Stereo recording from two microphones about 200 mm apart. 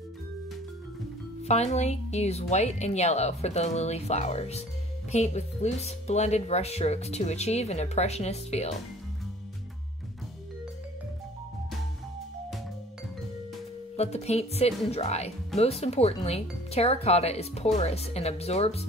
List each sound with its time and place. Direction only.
1.4 s speech: 35° left (ahead or behind)
13.9 s speech: 30° left (ahead or behind)